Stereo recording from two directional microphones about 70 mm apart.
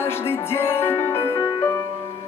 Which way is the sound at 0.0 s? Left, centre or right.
Left.